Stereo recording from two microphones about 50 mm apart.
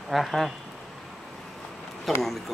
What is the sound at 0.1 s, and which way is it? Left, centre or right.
Speech, centre.